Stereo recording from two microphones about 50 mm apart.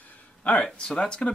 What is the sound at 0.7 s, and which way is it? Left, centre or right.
Speech, centre.